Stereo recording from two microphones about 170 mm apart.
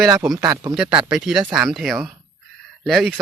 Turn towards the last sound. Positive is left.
turn(degrees=0)  # may be behind; listen again after turning